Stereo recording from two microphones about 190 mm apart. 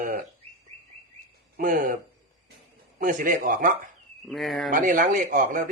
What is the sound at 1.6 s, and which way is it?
Speech, 45° right (ahead or behind).